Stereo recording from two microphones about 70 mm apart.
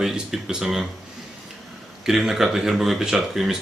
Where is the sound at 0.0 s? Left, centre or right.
Centre.